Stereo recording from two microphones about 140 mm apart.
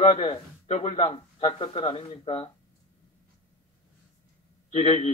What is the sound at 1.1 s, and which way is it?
Speech, 35° left (ahead or behind).